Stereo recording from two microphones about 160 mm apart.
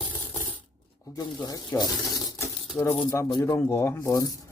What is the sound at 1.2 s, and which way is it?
Speech, 25° left (ahead or behind).